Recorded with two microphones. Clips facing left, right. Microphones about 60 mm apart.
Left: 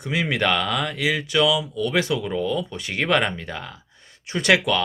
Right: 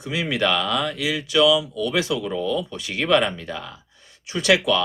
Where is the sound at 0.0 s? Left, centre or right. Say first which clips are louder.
Even; left.